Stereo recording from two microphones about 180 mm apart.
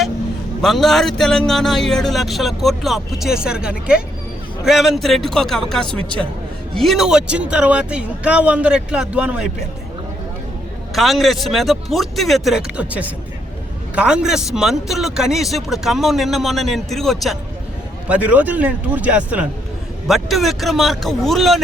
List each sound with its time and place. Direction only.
0.6 s a man's voice: centre (ahead or behind)
10.9 s a man's voice: centre (ahead or behind)